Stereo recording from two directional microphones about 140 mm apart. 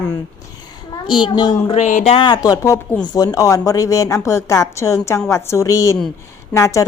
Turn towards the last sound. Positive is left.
turn(degrees=20)  # may be behind; listen again after turning